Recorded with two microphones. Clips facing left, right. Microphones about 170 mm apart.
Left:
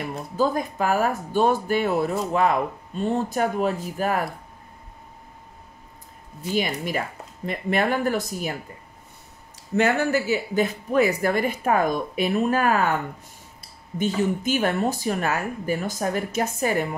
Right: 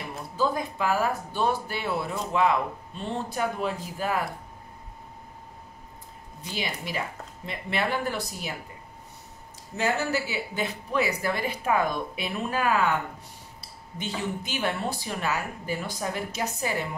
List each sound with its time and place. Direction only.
0.0 s speech: 45° left (ahead or behind)
6.5 s speech: 50° left (ahead or behind)
9.8 s speech: 60° left (ahead or behind)